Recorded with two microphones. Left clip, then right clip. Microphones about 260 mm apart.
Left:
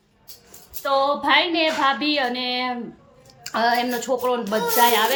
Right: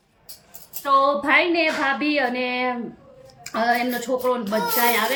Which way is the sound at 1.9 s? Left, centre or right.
Centre.